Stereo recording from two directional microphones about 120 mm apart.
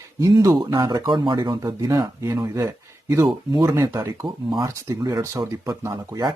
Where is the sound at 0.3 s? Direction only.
30° right (ahead or behind).